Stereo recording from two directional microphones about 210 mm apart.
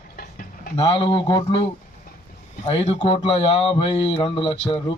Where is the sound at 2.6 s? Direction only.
30° left (ahead or behind).